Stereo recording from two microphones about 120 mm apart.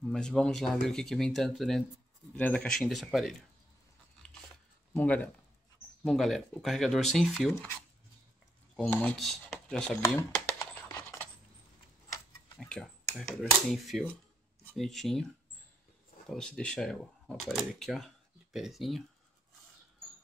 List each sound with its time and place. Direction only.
0.0 s speech: 5° left (ahead or behind)
4.9 s speech: 10° left (ahead or behind)
6.0 s speech: centre (ahead or behind)
8.7 s speech: 10° left (ahead or behind)
10.6 s a sound: 25° left (ahead or behind)
12.5 s speech: 5° left (ahead or behind)
16.3 s speech: 5° left (ahead or behind)